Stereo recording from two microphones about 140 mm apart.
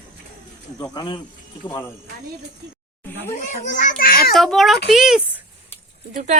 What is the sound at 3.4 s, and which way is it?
Speech, 65° left (ahead or behind).